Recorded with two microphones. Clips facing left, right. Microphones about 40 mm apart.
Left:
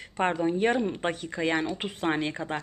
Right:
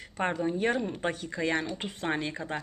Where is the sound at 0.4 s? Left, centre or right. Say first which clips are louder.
Left 3 dB; left.